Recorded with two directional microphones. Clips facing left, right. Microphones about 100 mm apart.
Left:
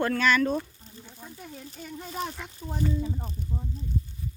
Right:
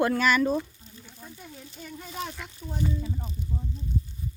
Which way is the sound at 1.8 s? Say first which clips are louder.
Left 2 dB; 15° left (ahead or behind).